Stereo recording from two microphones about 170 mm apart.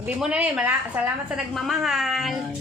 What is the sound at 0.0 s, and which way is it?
A woman's voice, 10° right (ahead or behind).